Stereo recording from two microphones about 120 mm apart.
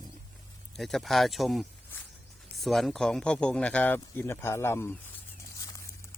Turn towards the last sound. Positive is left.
turn(degrees=20)  # may be behind; listen again after turning